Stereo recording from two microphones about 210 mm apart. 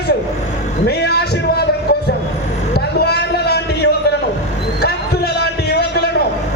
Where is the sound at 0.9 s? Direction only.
50° left (ahead or behind).